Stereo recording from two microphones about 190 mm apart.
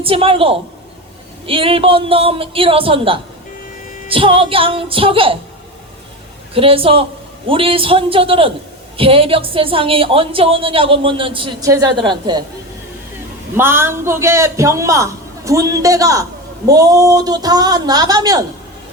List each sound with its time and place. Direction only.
0.0 s a woman's voice: 30° right (ahead or behind)
6.5 s a woman's voice: 30° right (ahead or behind)
13.6 s a man's voice: 10° right (ahead or behind)